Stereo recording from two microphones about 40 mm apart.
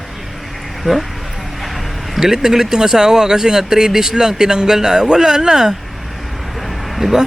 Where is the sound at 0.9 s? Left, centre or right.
Centre.